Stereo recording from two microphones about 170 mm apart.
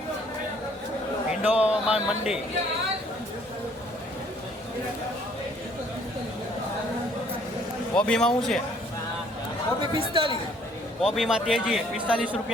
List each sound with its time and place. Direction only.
1.4 s a man's voice: 5° right (ahead or behind)
7.9 s a man's voice: 5° left (ahead or behind)
9.9 s speech: 30° right (ahead or behind)
11.0 s a man's voice: centre (ahead or behind)